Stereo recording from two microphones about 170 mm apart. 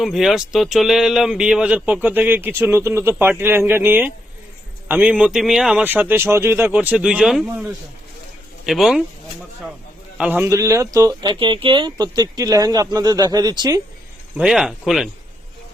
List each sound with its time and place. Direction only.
0.0 s speech: centre (ahead or behind)
8.6 s speech: centre (ahead or behind)
10.2 s speech: 10° right (ahead or behind)
14.3 s speech: centre (ahead or behind)